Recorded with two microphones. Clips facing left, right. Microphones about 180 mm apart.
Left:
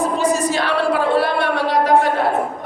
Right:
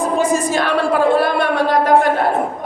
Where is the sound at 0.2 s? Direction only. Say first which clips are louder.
Right 2 dB; 50° right (ahead or behind).